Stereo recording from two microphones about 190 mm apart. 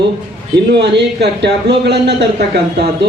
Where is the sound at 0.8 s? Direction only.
60° right (ahead or behind).